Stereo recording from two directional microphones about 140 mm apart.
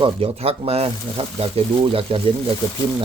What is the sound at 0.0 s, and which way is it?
Speech, 45° right (ahead or behind).